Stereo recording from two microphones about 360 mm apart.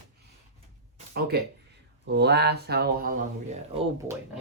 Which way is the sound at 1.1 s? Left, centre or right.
Right.